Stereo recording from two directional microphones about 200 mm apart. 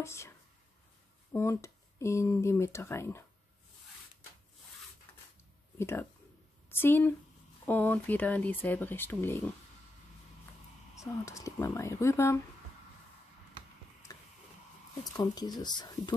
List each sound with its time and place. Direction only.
0.0 s speech: 15° left (ahead or behind)
1.3 s speech: 15° left (ahead or behind)
5.8 s speech: 10° left (ahead or behind)
11.0 s speech: 15° left (ahead or behind)
14.1 s a sound: 20° left (ahead or behind)
15.0 s speech: 20° left (ahead or behind)